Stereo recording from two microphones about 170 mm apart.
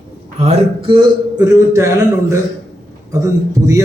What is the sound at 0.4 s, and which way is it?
A man's voice, 30° right (ahead or behind).